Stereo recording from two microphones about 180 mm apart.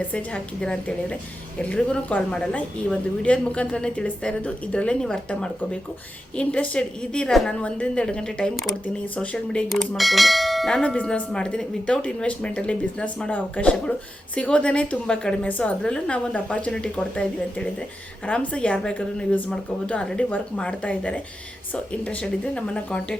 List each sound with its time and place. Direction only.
0.1 s a woman's voice: 5° left (ahead or behind)
18.3 s a woman's voice: 5° left (ahead or behind)